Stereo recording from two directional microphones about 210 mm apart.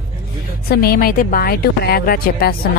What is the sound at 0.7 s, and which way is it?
Speech, 45° left (ahead or behind).